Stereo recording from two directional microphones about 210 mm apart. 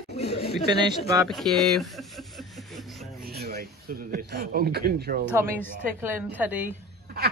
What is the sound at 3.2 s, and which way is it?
Speech, 50° right (ahead or behind).